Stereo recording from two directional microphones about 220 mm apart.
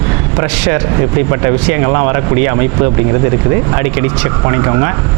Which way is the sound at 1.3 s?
20° right (ahead or behind).